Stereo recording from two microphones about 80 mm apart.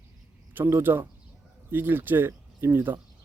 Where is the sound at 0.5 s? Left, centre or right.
Right.